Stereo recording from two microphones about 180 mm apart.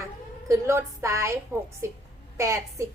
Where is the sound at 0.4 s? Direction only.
15° right (ahead or behind).